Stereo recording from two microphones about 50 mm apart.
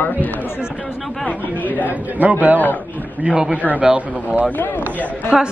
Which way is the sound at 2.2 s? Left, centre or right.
Right.